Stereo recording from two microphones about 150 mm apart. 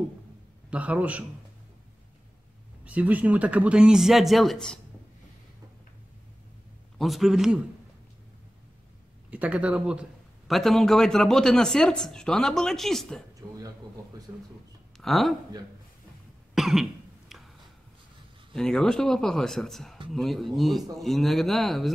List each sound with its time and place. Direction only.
0.7 s speech: 10° right (ahead or behind)
2.8 s speech: 10° right (ahead or behind)
7.0 s speech: centre (ahead or behind)
9.3 s speech: 10° right (ahead or behind)
13.4 s a sound: 30° right (ahead or behind)
14.3 s a man's voice: 20° right (ahead or behind)
15.0 s speech: centre (ahead or behind)
16.5 s cough: 5° right (ahead or behind)
18.5 s speech: 5° left (ahead or behind)